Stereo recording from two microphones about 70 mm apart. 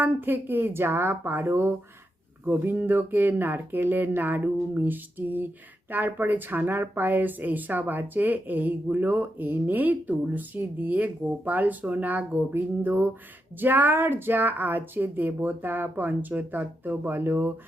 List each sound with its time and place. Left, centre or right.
0.0 s speech: right